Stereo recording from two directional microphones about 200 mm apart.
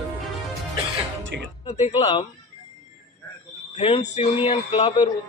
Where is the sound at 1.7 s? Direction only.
30° left (ahead or behind).